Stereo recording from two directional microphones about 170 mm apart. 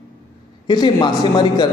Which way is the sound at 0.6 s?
25° left (ahead or behind).